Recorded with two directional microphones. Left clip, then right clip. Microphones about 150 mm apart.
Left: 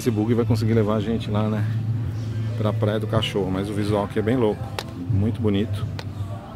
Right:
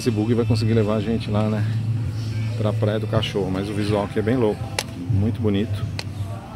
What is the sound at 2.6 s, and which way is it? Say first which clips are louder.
Speech: right 1 dB; 20° left (ahead or behind).